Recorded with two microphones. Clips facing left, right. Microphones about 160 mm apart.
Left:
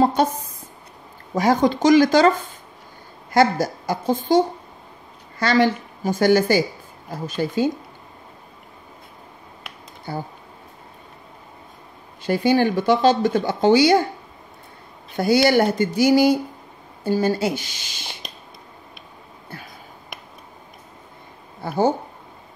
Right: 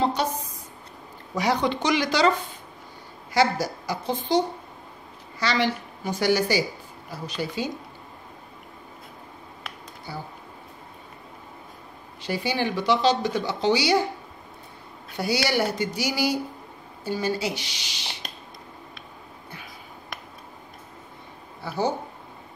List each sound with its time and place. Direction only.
0.0 s speech: 50° left (ahead or behind)
5.4 s speech: 50° left (ahead or behind)
10.1 s speech: 50° left (ahead or behind)
12.2 s speech: 50° left (ahead or behind)
15.1 s speech: 50° left (ahead or behind)
21.6 s speech: 50° left (ahead or behind)